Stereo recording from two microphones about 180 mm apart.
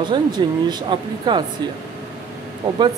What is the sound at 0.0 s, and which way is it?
Speech, 25° right (ahead or behind).